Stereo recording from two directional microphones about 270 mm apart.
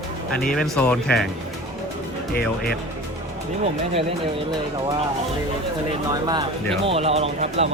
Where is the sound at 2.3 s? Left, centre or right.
Left.